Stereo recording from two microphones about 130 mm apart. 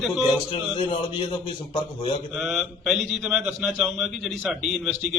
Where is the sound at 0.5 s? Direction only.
40° left (ahead or behind).